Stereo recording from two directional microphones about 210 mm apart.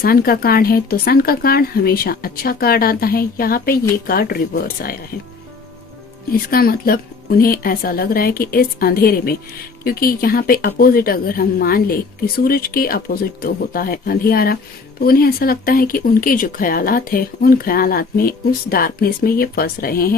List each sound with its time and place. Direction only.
0.0 s speech: 45° left (ahead or behind)
6.3 s speech: 45° left (ahead or behind)